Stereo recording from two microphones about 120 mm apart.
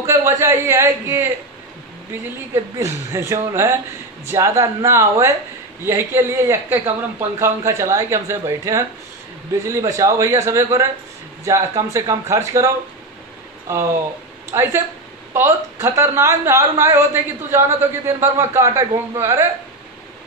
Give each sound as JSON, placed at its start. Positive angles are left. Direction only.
{"t": 0.0, "sound": "a man's voice", "side_deg": -25}
{"t": 2.5, "sound": "a woman's voice", "side_deg": -25}